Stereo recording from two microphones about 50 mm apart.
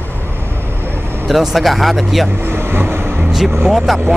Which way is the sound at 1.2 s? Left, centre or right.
Centre.